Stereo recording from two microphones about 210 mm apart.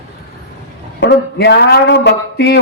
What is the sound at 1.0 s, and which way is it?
A man's voice, 55° left (ahead or behind).